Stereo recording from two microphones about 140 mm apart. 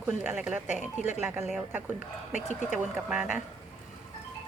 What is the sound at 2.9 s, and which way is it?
Speech, 5° right (ahead or behind).